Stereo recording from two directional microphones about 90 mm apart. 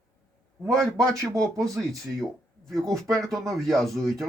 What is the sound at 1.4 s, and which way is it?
Speech, 5° left (ahead or behind).